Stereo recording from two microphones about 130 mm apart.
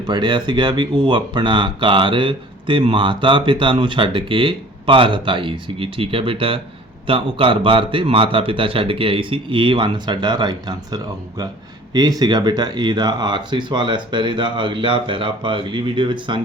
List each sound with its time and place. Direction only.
0.0 s speech: 35° right (ahead or behind)